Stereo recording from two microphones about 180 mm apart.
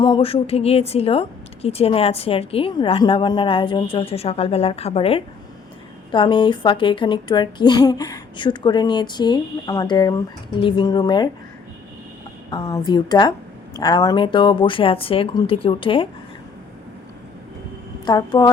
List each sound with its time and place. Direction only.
0.0 s a woman's voice: 30° left (ahead or behind)
12.5 s a woman's voice: 20° left (ahead or behind)
18.0 s speech: 25° left (ahead or behind)